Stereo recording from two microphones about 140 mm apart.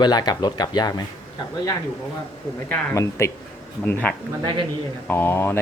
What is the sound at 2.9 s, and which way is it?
Speech, 20° left (ahead or behind).